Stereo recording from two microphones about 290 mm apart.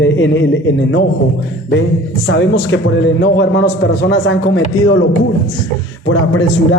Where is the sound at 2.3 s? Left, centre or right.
Left.